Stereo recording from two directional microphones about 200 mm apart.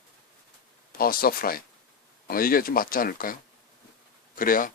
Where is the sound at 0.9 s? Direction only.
45° left (ahead or behind).